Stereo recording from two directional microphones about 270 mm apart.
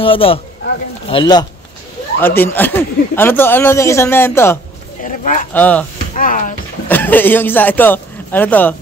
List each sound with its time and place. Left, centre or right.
0.0 s speech: centre
5.0 s speech: left
5.5 s speech: centre
6.1 s speech: left
6.9 s a man's voice: centre